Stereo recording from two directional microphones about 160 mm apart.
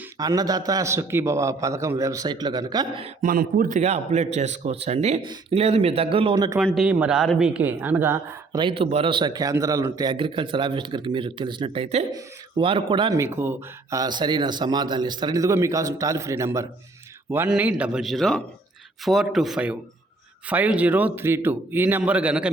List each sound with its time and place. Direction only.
0.2 s speech: 25° right (ahead or behind)
3.2 s a man's voice: 60° right (ahead or behind); by 5.2 s 45° right (ahead or behind)
5.2 s a man's voice: 30° right (ahead or behind)
6.7 s a man's voice: 5° right (ahead or behind)
8.8 s a man's voice: 35° right (ahead or behind)
13.1 s a man's voice: 15° right (ahead or behind)